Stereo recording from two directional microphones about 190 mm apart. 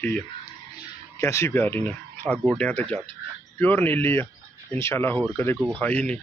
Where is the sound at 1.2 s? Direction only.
15° left (ahead or behind).